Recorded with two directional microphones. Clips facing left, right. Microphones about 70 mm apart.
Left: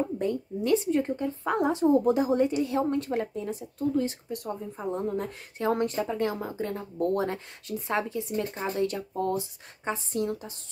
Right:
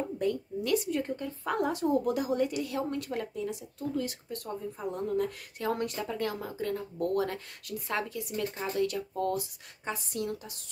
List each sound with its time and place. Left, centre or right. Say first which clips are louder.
0.2 s a woman's voice: left 2 dB; left